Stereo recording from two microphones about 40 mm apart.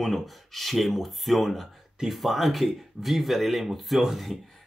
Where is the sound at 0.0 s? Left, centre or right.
Centre.